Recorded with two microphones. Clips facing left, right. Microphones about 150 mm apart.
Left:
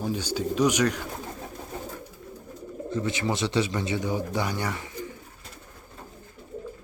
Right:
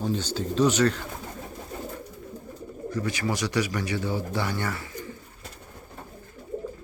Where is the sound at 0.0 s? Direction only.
10° left (ahead or behind).